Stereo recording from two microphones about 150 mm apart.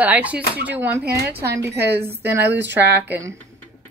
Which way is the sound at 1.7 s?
90° right.